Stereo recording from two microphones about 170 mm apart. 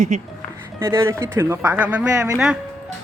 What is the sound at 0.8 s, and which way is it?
Speech, 15° right (ahead or behind).